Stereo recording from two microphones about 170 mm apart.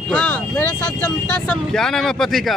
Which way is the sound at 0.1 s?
10° left (ahead or behind).